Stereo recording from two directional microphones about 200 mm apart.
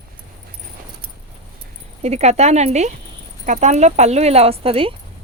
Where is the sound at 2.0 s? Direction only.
35° right (ahead or behind).